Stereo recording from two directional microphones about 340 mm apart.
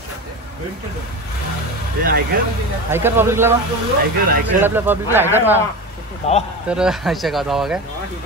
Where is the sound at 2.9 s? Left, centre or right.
Centre.